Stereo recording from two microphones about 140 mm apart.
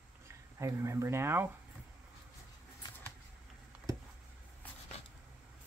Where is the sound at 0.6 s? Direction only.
20° right (ahead or behind).